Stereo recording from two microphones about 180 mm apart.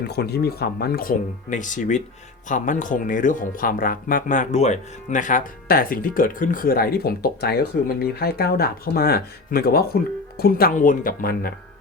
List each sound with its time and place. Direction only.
0.1 s speech: 65° left (ahead or behind)